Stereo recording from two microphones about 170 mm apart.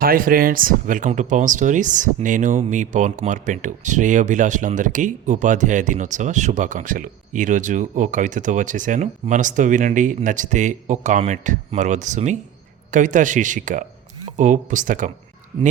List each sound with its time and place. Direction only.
0.0 s speech: 55° right (ahead or behind)